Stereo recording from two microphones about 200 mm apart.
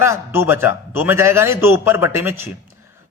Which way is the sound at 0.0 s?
15° right (ahead or behind).